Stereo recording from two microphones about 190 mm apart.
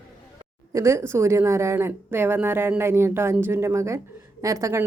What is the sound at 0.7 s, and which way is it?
A woman's voice, 15° right (ahead or behind).